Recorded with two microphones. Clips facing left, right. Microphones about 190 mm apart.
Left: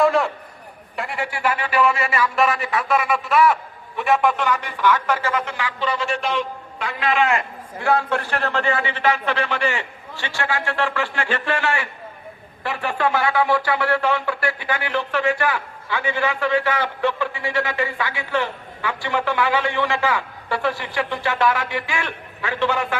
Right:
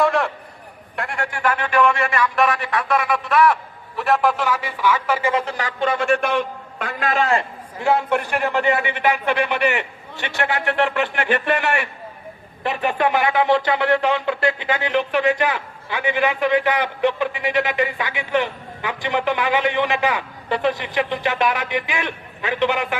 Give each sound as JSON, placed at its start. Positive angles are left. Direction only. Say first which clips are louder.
{"t": 0.0, "sound": "a sound", "louder": "left 1 dB", "side_deg": 0}
{"t": 0.9, "sound": "a man's voice", "louder": "even", "side_deg": 5}
{"t": 5.3, "sound": "a man's voice", "louder": "right 2 dB", "side_deg": -40}
{"t": 7.8, "sound": "speech", "louder": "right 1 dB", "side_deg": -20}